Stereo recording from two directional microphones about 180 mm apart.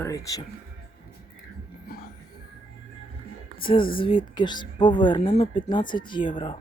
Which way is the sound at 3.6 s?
30° left (ahead or behind).